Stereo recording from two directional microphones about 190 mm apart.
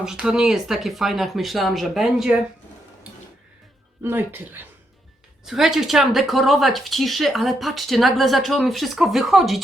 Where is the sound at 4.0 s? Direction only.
10° right (ahead or behind).